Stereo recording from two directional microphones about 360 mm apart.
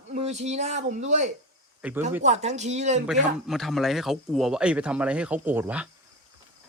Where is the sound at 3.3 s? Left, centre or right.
Centre.